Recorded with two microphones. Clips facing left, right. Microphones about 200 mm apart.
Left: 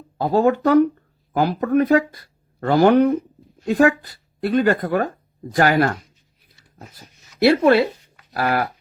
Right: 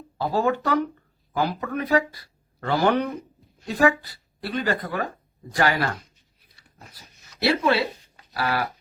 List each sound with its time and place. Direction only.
0.2 s speech: 45° left (ahead or behind)